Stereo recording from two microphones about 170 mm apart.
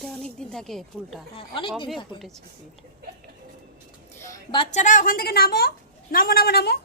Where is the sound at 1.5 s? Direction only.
30° left (ahead or behind).